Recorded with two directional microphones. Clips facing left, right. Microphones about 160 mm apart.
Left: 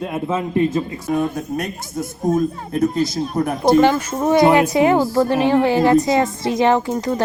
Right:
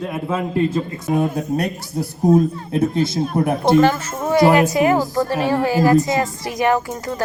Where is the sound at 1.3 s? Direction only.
35° right (ahead or behind).